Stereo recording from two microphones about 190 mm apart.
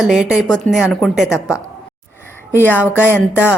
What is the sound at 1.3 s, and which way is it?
Music, 15° left (ahead or behind).